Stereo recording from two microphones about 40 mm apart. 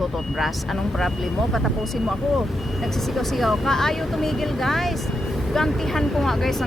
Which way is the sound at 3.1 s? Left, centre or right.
Centre.